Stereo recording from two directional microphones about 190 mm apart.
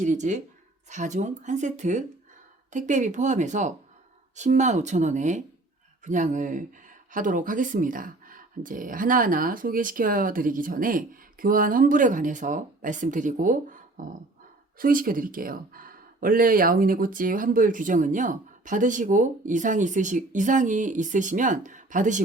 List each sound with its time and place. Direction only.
0.0 s speech: 40° right (ahead or behind)